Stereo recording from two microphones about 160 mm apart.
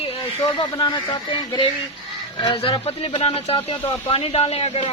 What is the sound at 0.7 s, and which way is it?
A man's voice, 25° left (ahead or behind).